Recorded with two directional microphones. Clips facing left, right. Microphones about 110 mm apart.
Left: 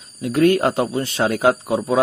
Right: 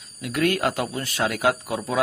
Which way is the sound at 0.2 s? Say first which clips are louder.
Left 7 dB; 30° left (ahead or behind).